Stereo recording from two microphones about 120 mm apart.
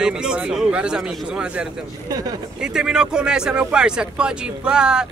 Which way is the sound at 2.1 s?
30° right (ahead or behind).